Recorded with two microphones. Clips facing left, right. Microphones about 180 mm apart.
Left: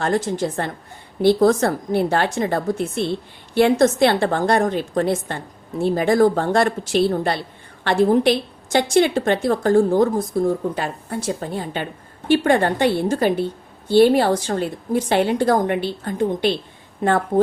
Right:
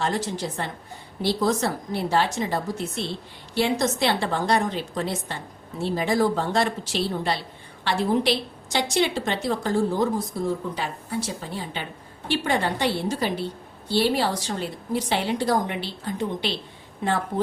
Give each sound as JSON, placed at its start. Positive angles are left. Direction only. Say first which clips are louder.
{"t": 0.0, "sound": "a woman's voice", "louder": "left 6 dB", "side_deg": 50}